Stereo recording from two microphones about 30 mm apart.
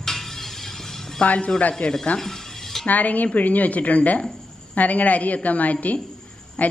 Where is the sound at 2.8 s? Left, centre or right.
Left.